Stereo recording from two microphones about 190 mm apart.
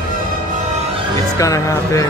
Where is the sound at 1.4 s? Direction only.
15° left (ahead or behind).